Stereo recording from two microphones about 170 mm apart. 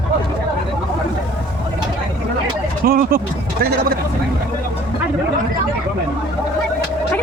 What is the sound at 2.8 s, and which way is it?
Speech, 60° right (ahead or behind).